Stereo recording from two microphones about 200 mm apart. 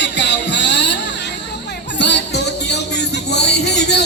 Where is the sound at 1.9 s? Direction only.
60° left (ahead or behind).